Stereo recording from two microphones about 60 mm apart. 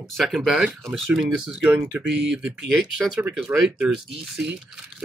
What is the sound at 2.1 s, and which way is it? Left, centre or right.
Speech, centre.